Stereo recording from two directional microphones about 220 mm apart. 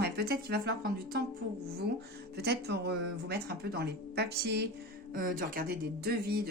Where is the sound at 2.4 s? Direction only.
50° right (ahead or behind).